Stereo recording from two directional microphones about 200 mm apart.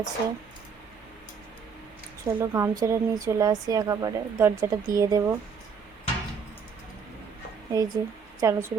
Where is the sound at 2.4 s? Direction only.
15° right (ahead or behind).